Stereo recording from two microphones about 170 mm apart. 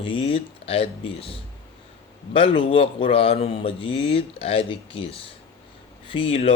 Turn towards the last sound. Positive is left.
turn(degrees=35)  # may be behind; listen again after turning